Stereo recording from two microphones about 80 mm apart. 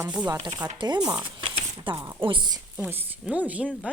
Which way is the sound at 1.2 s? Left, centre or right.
Right.